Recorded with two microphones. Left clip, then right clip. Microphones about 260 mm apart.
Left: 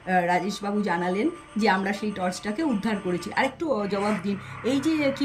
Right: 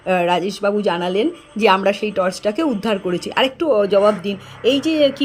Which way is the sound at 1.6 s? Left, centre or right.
Centre.